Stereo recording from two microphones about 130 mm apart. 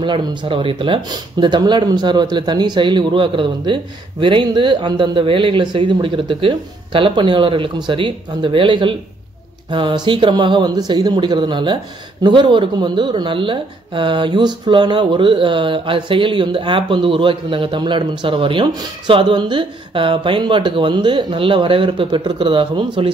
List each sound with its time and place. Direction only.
0.0 s speech: 35° right (ahead or behind)